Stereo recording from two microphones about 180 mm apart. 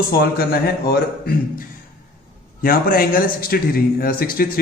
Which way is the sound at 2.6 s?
55° left (ahead or behind).